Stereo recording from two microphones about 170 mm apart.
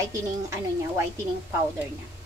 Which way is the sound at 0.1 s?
15° right (ahead or behind).